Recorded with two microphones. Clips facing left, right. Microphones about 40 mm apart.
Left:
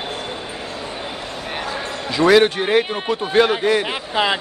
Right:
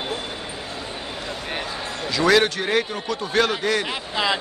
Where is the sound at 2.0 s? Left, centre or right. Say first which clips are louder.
Left 4 dB; left.